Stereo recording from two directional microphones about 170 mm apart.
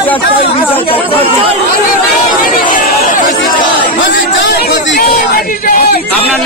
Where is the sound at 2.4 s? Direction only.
50° left (ahead or behind).